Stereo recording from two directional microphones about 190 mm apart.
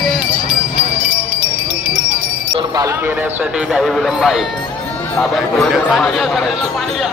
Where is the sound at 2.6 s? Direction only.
15° right (ahead or behind).